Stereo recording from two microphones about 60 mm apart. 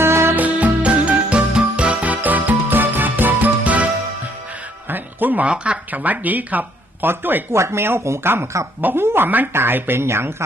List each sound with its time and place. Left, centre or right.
0.0 s music: right
0.3 s music: right
4.9 s music: right
5.5 s speech: centre; by 7.4 s right
7.5 s speech: right